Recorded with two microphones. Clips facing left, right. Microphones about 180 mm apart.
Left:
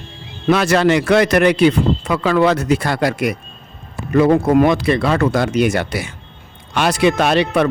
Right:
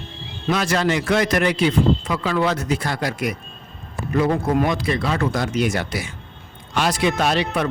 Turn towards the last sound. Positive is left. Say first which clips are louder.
# left 6 dB
turn(degrees=70)  # may be behind; listen again after turning